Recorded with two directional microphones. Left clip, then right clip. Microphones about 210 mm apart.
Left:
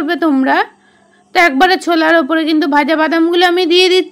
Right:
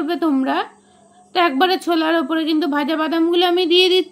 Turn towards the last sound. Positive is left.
turn(degrees=25)  # may be behind; listen again after turning